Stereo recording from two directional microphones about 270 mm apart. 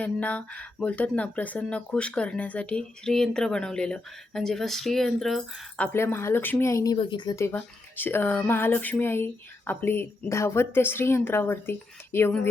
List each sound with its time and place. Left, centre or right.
0.0 s speech: centre